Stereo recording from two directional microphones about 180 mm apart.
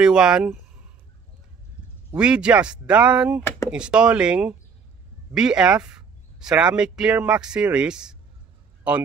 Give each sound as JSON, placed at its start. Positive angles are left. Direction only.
{"t": 0.0, "sound": "speech", "side_deg": -5}
{"t": 2.0, "sound": "speech", "side_deg": -5}
{"t": 3.4, "sound": "a sound", "side_deg": 15}
{"t": 3.7, "sound": "speech", "side_deg": -5}